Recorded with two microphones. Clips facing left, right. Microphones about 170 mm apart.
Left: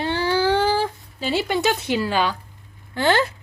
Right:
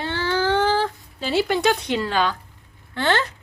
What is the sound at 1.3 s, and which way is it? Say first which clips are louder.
Speech: right 2 dB; centre (ahead or behind).